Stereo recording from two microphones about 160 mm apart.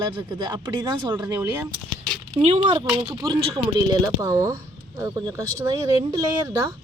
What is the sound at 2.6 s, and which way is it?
Speech, 25° right (ahead or behind).